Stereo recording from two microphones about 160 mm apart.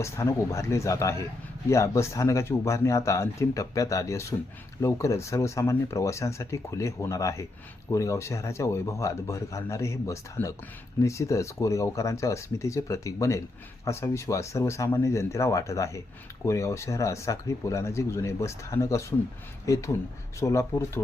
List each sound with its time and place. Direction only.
0.0 s speech: 15° left (ahead or behind)